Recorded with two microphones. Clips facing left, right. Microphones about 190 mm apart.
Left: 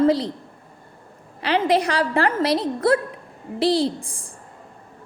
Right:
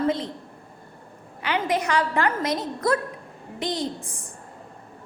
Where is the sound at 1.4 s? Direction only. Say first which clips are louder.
Left 5 dB; 35° left (ahead or behind).